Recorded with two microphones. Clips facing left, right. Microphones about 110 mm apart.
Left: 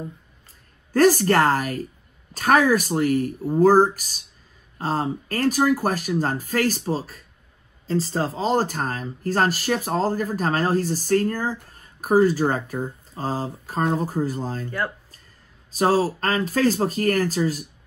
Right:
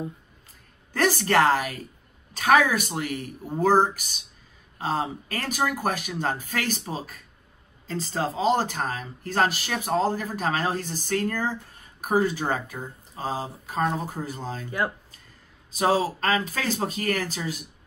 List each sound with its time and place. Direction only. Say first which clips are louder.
0.9 s speech: left 5 dB; 40° left (ahead or behind)
15.7 s speech: left 3 dB; 40° left (ahead or behind)